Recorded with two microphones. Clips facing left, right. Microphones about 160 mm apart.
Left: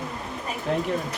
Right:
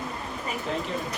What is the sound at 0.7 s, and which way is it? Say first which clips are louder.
Speech: left 6 dB; 55° left (ahead or behind).